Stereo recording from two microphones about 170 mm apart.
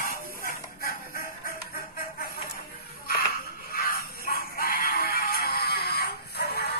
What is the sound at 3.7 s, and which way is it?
Music, 65° left (ahead or behind).